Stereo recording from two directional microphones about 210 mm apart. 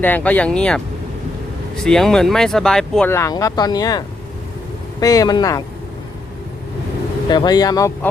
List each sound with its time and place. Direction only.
0.0 s speech: 5° left (ahead or behind)
7.3 s speech: 20° left (ahead or behind)